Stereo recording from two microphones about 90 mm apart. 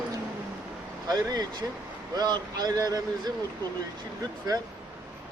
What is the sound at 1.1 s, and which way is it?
Speech, 50° right (ahead or behind).